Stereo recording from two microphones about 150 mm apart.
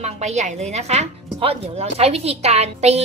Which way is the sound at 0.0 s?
50° right (ahead or behind).